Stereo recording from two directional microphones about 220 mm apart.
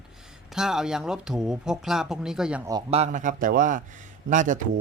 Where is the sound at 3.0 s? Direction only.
35° right (ahead or behind).